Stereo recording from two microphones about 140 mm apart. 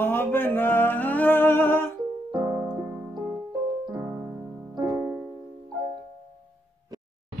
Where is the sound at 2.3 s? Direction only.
15° right (ahead or behind).